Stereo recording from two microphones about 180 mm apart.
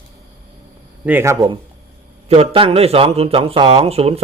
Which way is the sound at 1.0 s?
15° right (ahead or behind).